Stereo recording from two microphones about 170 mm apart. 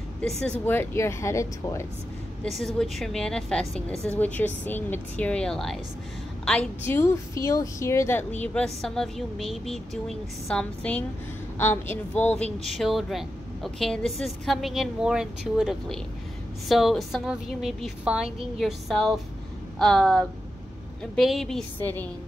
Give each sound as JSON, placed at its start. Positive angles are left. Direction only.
{"t": 0.2, "sound": "a woman's voice", "side_deg": 5}
{"t": 2.5, "sound": "a woman's voice", "side_deg": 0}